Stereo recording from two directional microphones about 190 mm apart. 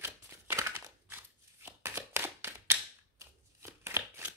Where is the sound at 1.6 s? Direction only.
15° right (ahead or behind).